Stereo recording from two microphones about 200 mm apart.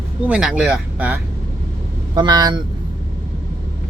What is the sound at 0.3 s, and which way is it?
Speech, 5° right (ahead or behind).